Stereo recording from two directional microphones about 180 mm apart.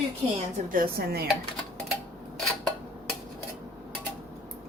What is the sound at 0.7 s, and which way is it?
Speech, 55° right (ahead or behind).